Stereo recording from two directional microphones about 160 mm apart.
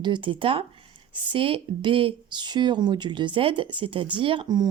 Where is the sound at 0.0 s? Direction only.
30° right (ahead or behind).